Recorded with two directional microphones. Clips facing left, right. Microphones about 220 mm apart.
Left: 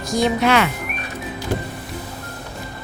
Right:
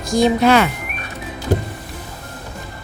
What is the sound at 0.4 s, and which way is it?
Speech, 35° right (ahead or behind).